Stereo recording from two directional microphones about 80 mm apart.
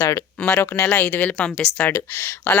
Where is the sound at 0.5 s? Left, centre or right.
Left.